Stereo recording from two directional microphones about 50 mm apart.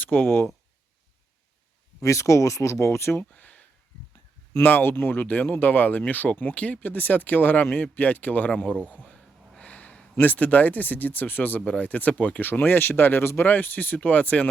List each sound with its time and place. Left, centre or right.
0.0 s speech: left
2.0 s speech: left
3.2 s a sound: left
4.6 s speech: left
9.6 s a sound: left
10.2 s speech: left
13.4 s speech: left